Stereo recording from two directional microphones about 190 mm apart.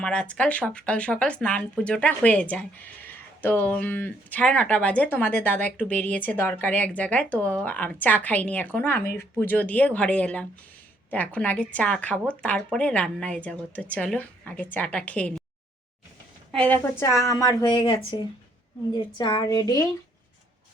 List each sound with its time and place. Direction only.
0.0 s speech: 5° left (ahead or behind)
16.5 s a woman's voice: 5° left (ahead or behind)